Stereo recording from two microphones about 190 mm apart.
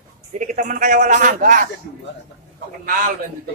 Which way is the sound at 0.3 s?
40° right (ahead or behind).